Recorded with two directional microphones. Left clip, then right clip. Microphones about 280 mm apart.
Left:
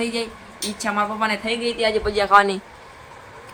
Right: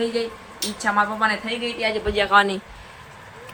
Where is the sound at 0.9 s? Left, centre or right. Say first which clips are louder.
Right 1 dB; centre.